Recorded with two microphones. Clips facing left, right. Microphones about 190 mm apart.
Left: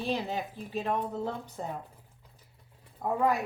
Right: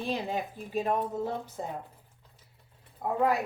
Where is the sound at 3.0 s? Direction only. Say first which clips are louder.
Left 1 dB; 5° right (ahead or behind).